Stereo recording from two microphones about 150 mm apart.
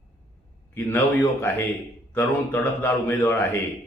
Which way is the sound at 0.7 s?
15° left (ahead or behind).